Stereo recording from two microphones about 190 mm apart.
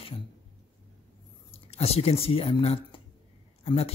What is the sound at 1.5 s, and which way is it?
Speech, 30° left (ahead or behind).